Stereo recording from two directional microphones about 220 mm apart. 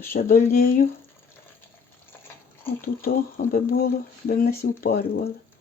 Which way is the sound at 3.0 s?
40° left (ahead or behind).